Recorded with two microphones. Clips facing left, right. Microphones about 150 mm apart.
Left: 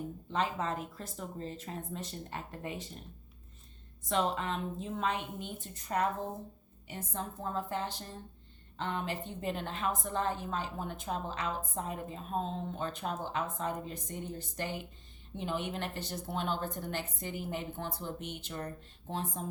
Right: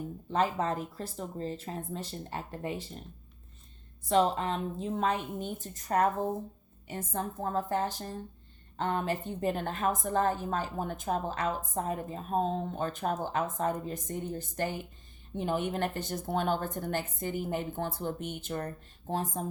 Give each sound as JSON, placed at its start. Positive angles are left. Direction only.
{"t": 0.3, "sound": "speech", "side_deg": -40}
{"t": 4.1, "sound": "a woman's voice", "side_deg": -35}